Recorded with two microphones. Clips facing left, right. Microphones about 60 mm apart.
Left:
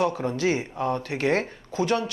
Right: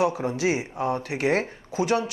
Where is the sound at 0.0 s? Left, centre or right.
Centre.